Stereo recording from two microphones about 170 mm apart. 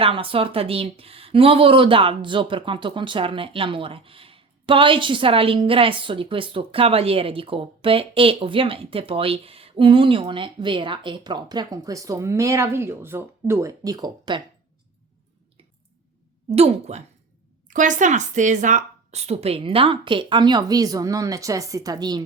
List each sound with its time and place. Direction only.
0.0 s a woman's voice: 30° right (ahead or behind)
16.5 s a woman's voice: 35° right (ahead or behind)